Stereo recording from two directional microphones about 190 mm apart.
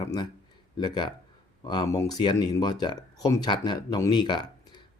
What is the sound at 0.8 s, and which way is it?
Speech, 25° left (ahead or behind).